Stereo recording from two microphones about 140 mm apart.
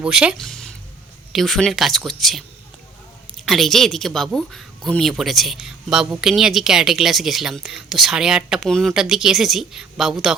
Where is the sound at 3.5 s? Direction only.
Centre (ahead or behind).